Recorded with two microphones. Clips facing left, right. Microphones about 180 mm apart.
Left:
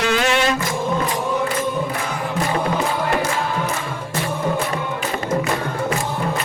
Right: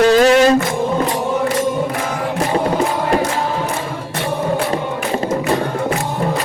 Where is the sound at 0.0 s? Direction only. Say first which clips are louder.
Right 9 dB; 40° right (ahead or behind).